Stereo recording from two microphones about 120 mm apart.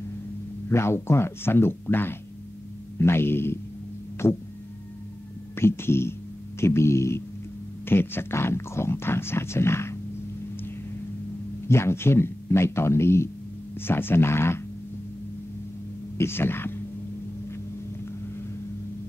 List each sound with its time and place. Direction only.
0.7 s speech: 20° left (ahead or behind)
5.6 s speech: 20° left (ahead or behind)
11.6 s speech: 20° left (ahead or behind)
16.2 s speech: 20° left (ahead or behind)